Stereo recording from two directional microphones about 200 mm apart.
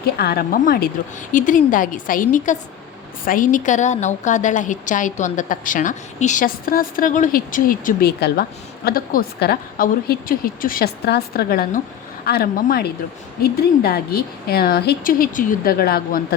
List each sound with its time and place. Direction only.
0.0 s a woman's voice: 50° left (ahead or behind)